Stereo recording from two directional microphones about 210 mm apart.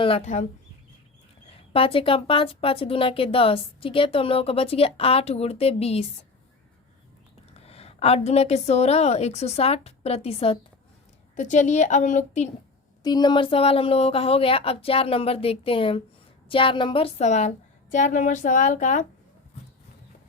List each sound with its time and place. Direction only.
0.0 s speech: 30° left (ahead or behind)
1.7 s speech: 25° left (ahead or behind)
7.5 s a woman's voice: 30° left (ahead or behind)
13.0 s speech: 20° left (ahead or behind); by 19.0 s 35° left (ahead or behind)